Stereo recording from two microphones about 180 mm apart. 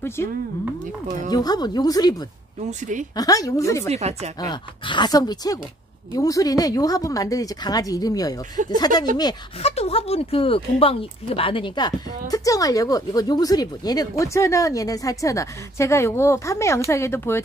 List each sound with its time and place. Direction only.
0.0 s speech: 15° left (ahead or behind)
1.3 s a woman's voice: 20° left (ahead or behind)
2.6 s speech: 45° right (ahead or behind)
3.2 s a woman's voice: 20° left (ahead or behind)
3.9 s speech: 35° right (ahead or behind)
4.4 s a woman's voice: 25° left (ahead or behind)
9.6 s speech: 35° left (ahead or behind); by 17.4 s 15° left (ahead or behind)